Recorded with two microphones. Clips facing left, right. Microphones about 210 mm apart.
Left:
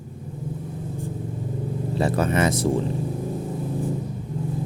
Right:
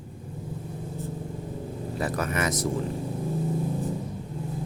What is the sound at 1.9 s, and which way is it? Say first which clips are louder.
Speech: left 6 dB; 30° left (ahead or behind).